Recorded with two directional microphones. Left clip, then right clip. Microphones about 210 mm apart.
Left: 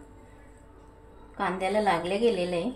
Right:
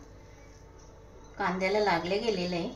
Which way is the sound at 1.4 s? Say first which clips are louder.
Left 1 dB; 30° left (ahead or behind).